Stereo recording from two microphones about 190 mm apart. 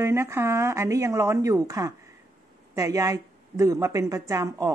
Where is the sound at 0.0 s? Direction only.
15° right (ahead or behind).